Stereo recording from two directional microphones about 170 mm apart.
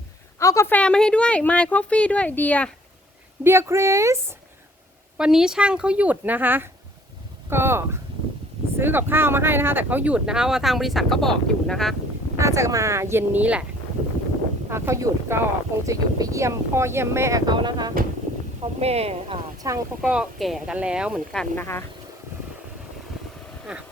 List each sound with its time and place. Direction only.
0.3 s a woman's voice: 20° left (ahead or behind)
3.4 s speech: 15° right (ahead or behind)
5.1 s speech: 5° right (ahead or behind)
12.4 s speech: 20° right (ahead or behind)
14.7 s speech: 15° right (ahead or behind)
18.6 s speech: 35° right (ahead or behind)
19.6 s speech: 20° right (ahead or behind)
20.0 s speech: 5° right (ahead or behind)
21.5 s a woman's voice: 15° left (ahead or behind)
23.7 s speech: 5° right (ahead or behind)